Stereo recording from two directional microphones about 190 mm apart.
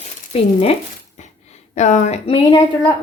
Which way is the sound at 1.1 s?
40° left (ahead or behind).